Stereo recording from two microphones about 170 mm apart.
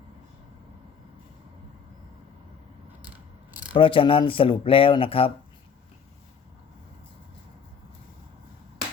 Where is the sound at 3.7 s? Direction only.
30° left (ahead or behind).